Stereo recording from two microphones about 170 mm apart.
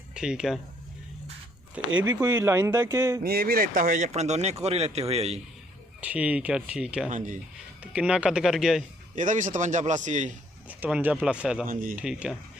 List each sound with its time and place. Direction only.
0.1 s speech: 5° right (ahead or behind)
1.8 s speech: 5° right (ahead or behind)
3.2 s a man's voice: 60° right (ahead or behind); by 5.4 s 40° right (ahead or behind)
6.0 s speech: 10° right (ahead or behind)
7.1 s speech: 50° right (ahead or behind)
7.8 s speech: 5° right (ahead or behind)
9.1 s speech: 45° right (ahead or behind)
10.7 s speech: 10° right (ahead or behind)
11.6 s speech: 55° right (ahead or behind)
11.9 s speech: 5° right (ahead or behind)